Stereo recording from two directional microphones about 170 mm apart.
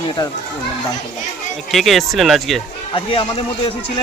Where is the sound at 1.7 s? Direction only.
Centre (ahead or behind).